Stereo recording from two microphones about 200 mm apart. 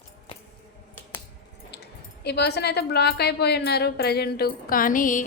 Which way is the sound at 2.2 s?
55° left (ahead or behind).